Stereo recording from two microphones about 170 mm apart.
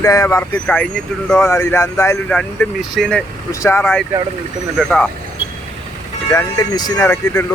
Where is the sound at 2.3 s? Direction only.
5° left (ahead or behind).